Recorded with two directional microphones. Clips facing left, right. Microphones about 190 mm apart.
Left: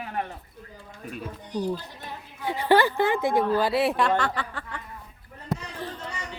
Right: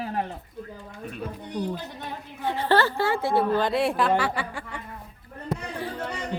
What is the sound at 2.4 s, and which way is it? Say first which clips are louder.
A woman's voice: left 2 dB; 10° left (ahead or behind).